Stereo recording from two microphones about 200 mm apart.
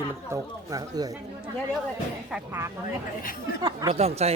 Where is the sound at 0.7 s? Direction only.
20° right (ahead or behind).